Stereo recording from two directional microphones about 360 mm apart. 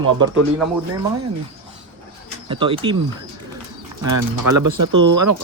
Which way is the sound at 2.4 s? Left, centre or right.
Centre.